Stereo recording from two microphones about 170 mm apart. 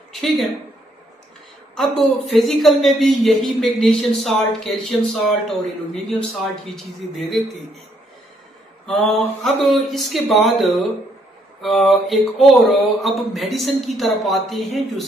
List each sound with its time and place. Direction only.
0.1 s speech: centre (ahead or behind)
1.8 s speech: centre (ahead or behind)
8.8 s speech: centre (ahead or behind)